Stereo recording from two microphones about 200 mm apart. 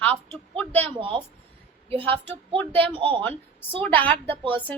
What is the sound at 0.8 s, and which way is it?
A woman's voice, 25° right (ahead or behind).